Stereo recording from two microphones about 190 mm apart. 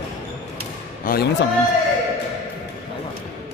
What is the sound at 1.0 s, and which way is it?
Speech, 55° left (ahead or behind).